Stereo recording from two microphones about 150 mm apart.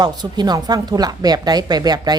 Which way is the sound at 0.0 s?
30° right (ahead or behind).